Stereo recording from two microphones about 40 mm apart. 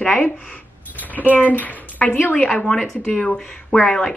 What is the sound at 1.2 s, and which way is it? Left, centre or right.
A woman's voice, left.